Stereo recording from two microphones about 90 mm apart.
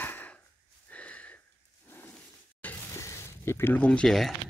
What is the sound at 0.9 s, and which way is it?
Sniff, 15° left (ahead or behind).